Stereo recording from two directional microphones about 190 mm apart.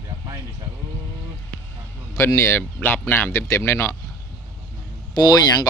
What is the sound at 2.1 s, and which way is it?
Speech, 15° left (ahead or behind).